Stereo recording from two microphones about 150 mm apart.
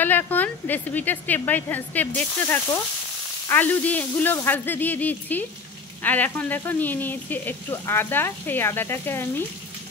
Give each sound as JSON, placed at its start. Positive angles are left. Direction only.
{"t": 0.0, "sound": "speech", "side_deg": 10}